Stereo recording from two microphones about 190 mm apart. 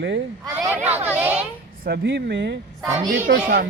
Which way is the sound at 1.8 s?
65° right (ahead or behind).